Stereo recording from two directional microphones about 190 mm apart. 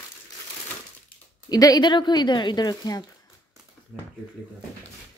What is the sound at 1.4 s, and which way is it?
Speech, 20° left (ahead or behind).